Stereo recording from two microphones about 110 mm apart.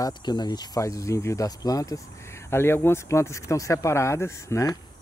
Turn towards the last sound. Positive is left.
turn(degrees=30)  # may be behind; listen again after turning